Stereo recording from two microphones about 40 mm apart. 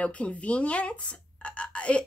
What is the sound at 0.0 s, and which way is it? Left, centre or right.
A woman's voice, left.